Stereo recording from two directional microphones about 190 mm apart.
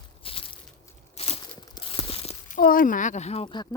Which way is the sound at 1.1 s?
30° left (ahead or behind).